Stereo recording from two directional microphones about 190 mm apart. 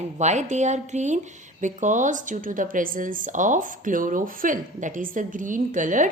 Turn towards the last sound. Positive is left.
turn(degrees=-45)  # may be behind; listen again after turning